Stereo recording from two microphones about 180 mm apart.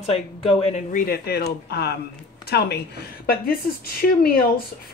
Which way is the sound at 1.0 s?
60° left (ahead or behind).